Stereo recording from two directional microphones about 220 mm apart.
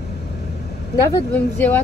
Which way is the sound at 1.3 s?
5° left (ahead or behind).